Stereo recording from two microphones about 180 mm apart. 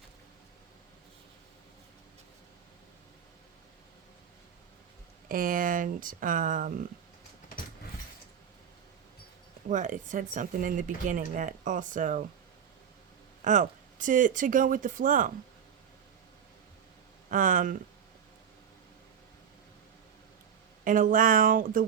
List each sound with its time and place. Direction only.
5.3 s speech: 50° right (ahead or behind)
9.6 s speech: 45° right (ahead or behind)
13.4 s speech: 45° right (ahead or behind)
17.2 s speech: 45° right (ahead or behind)
20.8 s speech: 50° right (ahead or behind)